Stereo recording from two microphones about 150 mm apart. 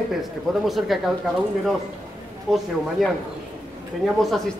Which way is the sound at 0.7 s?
Centre (ahead or behind).